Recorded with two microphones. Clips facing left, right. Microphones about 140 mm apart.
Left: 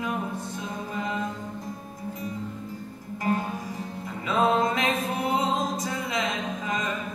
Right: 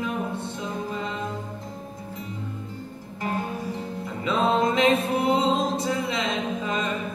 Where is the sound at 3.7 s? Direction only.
25° right (ahead or behind).